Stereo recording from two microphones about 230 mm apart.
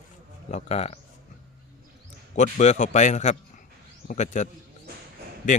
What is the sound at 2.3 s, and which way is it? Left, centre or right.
A man's voice, left.